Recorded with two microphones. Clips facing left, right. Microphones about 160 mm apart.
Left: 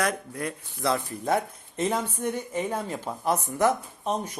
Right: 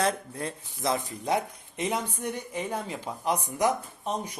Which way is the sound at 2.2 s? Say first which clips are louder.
Left 4 dB; 45° left (ahead or behind).